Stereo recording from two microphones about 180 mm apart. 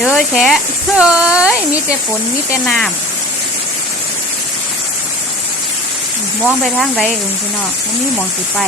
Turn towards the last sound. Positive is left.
turn(degrees=0)  # may be behind; listen again after turning